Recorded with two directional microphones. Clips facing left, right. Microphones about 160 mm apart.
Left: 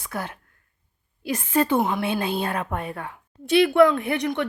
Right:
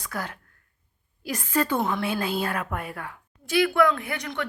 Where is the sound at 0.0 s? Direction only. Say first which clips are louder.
Left 2 dB; 25° left (ahead or behind).